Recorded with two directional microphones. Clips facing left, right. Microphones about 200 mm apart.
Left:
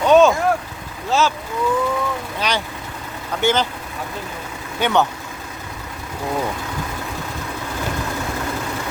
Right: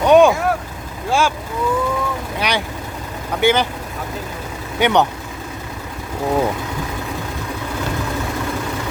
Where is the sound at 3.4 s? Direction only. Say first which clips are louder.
Right 3 dB; 10° right (ahead or behind).